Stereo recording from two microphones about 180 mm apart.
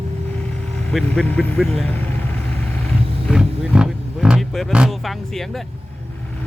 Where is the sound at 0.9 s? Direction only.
5° left (ahead or behind).